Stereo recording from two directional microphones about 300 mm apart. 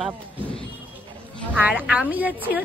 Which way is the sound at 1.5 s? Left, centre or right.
Centre.